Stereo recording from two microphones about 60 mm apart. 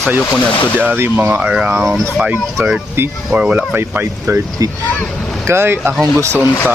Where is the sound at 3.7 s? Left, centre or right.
Right.